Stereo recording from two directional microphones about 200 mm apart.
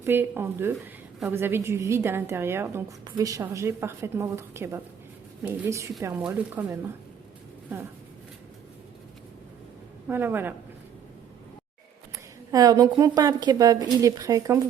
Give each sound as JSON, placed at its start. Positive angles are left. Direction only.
{"t": 0.0, "sound": "a woman's voice", "side_deg": -10}
{"t": 10.1, "sound": "a woman's voice", "side_deg": -10}
{"t": 12.1, "sound": "a woman's voice", "side_deg": -15}